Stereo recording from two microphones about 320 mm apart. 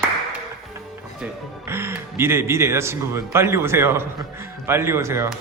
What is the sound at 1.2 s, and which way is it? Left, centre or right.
Speech, centre.